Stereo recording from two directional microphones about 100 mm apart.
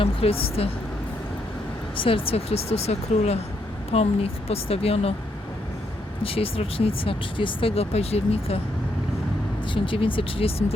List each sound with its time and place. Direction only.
0.0 s speech: 70° left (ahead or behind)
2.0 s a woman's voice: 65° left (ahead or behind); by 5.1 s 80° left
6.2 s speech: 75° left (ahead or behind)
9.7 s speech: 60° left (ahead or behind)